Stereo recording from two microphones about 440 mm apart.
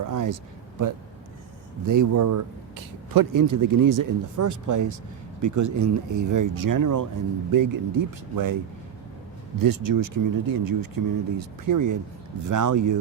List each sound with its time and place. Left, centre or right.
0.0 s a man's voice: right
1.8 s a man's voice: right
9.6 s a man's voice: right